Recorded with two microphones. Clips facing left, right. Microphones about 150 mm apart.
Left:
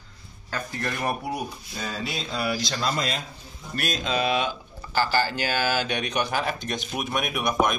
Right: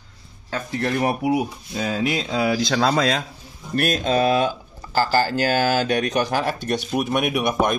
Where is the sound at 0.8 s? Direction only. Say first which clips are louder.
Right 7 dB; 75° right (ahead or behind).